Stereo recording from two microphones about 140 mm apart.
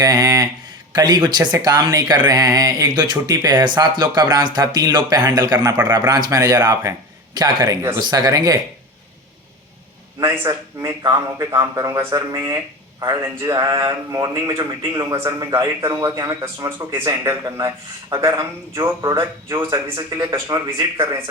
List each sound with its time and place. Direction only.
0.0 s speech: 25° right (ahead or behind)
10.2 s speech: 20° right (ahead or behind)